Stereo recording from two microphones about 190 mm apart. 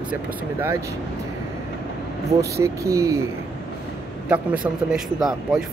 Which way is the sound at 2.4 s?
15° right (ahead or behind).